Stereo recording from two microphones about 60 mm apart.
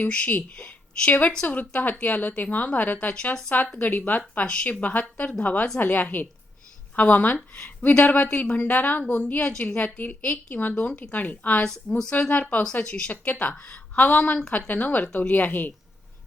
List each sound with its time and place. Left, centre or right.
0.0 s speech: left
11.7 s a woman's voice: centre
12.3 s speech: left